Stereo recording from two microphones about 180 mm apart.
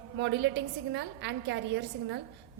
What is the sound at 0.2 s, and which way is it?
A woman's voice, 75° right (ahead or behind).